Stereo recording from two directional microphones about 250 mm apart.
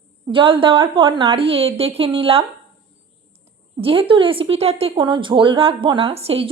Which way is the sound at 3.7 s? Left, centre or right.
Right.